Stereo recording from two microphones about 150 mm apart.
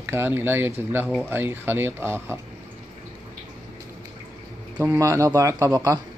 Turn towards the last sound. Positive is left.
turn(degrees=-20)  # may be behind; listen again after turning